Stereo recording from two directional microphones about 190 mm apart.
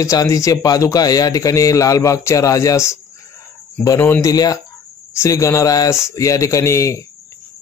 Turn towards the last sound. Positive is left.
turn(degrees=15)  # may be behind; listen again after turning